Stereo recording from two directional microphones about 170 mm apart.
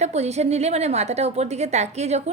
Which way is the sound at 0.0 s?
40° right (ahead or behind).